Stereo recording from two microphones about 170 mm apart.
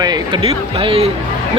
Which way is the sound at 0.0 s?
25° right (ahead or behind).